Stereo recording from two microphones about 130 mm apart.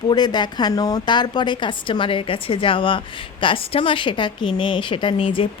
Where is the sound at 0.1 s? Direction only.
35° left (ahead or behind).